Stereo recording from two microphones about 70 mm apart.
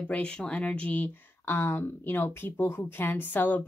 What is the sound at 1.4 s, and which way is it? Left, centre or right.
Speech, left.